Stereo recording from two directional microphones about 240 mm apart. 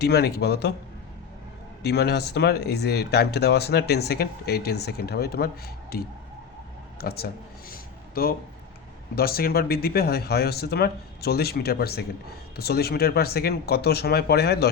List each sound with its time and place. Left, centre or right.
0.0 s speech: left
1.8 s speech: left
7.7 s a sound: left
9.1 s speech: left